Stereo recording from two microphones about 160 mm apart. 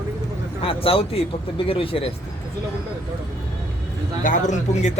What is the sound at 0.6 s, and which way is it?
A man's voice, 35° left (ahead or behind).